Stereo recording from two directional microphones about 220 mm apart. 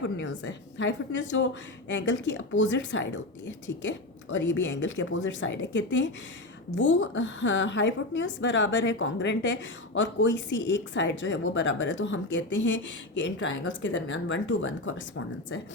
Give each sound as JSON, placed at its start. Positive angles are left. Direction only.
{"t": 0.0, "sound": "a woman's voice", "side_deg": 55}